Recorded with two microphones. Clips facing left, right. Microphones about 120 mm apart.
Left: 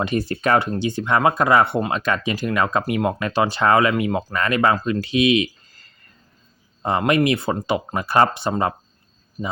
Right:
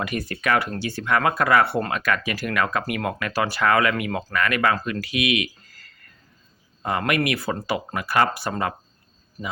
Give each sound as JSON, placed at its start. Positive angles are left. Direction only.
{"t": 0.0, "sound": "speech", "side_deg": 25}
{"t": 0.7, "sound": "speech", "side_deg": 20}
{"t": 4.9, "sound": "a sound", "side_deg": 25}
{"t": 6.8, "sound": "speech", "side_deg": 25}